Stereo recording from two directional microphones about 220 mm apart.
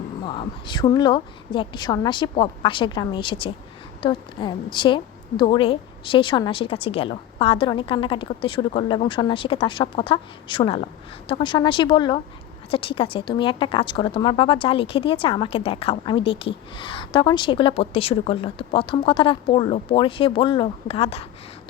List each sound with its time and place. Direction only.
0.3 s a woman's voice: 20° left (ahead or behind)